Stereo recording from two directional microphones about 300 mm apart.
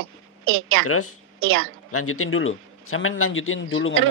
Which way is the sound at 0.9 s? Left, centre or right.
Left.